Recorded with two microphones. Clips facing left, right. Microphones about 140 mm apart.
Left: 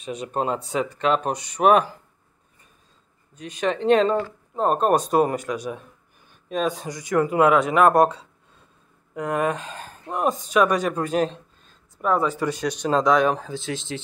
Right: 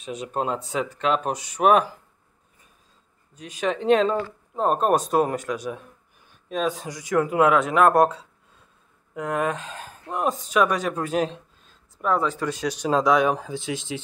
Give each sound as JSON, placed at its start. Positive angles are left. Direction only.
{"t": 0.0, "sound": "speech", "side_deg": 0}
{"t": 3.3, "sound": "speech", "side_deg": -5}